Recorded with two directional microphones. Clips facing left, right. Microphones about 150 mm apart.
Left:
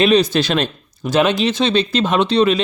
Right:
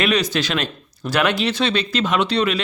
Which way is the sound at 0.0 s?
25° left (ahead or behind).